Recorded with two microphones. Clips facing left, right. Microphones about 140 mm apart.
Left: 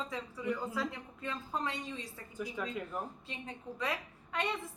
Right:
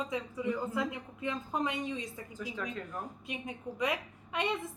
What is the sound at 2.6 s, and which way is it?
Speech, 10° left (ahead or behind).